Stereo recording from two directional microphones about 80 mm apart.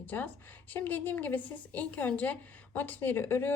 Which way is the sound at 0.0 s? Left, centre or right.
Left.